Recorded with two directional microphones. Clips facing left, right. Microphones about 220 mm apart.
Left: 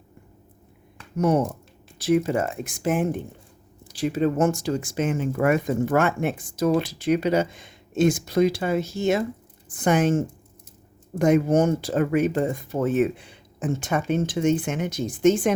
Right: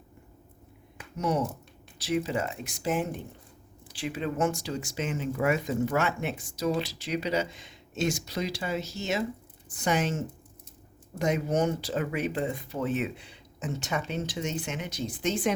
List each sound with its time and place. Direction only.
1.1 s speech: 55° left (ahead or behind)
3.8 s speech: 40° left (ahead or behind)